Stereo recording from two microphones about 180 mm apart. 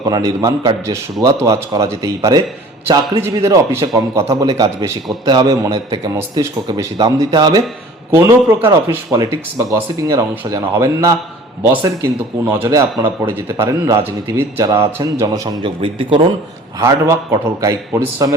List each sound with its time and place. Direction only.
0.0 s a man's voice: 20° right (ahead or behind)
12.5 s a man's voice: 20° right (ahead or behind)